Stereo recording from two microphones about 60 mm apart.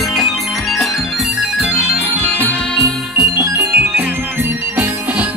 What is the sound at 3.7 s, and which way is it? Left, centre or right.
Music, right.